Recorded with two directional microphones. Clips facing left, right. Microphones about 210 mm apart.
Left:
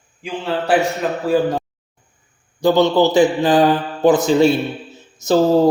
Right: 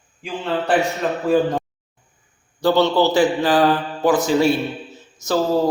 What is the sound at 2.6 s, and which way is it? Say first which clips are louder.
A man's voice: left 3 dB; 15° left (ahead or behind).